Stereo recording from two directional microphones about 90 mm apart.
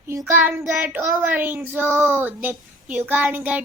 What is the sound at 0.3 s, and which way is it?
A child's voice, 20° right (ahead or behind).